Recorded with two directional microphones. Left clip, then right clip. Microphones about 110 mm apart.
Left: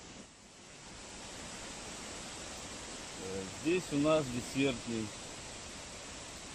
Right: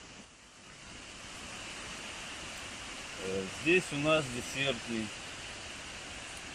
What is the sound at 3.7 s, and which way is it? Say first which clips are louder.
Speech: right 3 dB; 20° left (ahead or behind).